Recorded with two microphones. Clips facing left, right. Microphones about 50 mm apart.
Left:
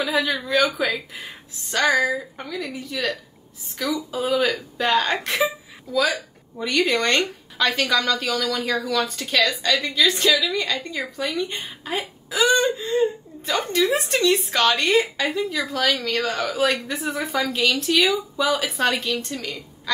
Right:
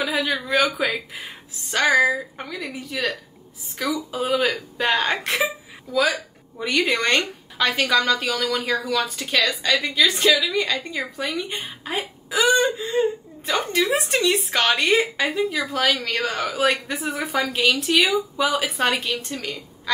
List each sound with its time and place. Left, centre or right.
0.0 s a woman's voice: centre
4.4 s a woman's voice: centre
18.0 s a woman's voice: centre